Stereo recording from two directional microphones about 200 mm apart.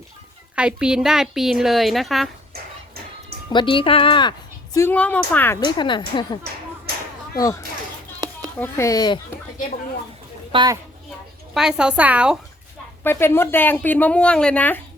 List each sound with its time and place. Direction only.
0.5 s a woman's voice: 5° right (ahead or behind)
3.5 s a woman's voice: 25° left (ahead or behind)
8.5 s speech: 10° left (ahead or behind)
10.5 s a woman's voice: 20° right (ahead or behind)
11.5 s a woman's voice: 5° right (ahead or behind)
13.1 s speech: 10° left (ahead or behind)